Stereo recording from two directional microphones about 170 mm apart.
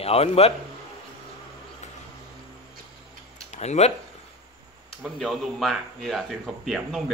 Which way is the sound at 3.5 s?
40° left (ahead or behind).